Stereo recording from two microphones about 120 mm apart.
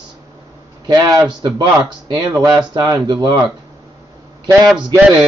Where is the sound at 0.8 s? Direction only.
35° right (ahead or behind).